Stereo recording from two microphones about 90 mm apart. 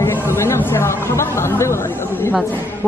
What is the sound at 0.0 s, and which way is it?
Chatter, 25° left (ahead or behind).